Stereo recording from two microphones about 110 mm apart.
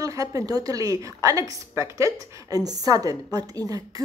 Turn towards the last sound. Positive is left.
turn(degrees=-35)  # may be behind; listen again after turning